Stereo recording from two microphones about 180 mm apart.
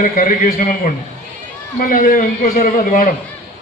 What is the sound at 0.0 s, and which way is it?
Speech, 50° left (ahead or behind).